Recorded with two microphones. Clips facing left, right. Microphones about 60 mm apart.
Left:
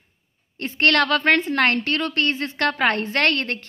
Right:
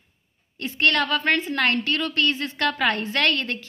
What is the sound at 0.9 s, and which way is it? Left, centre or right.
A woman's voice, left.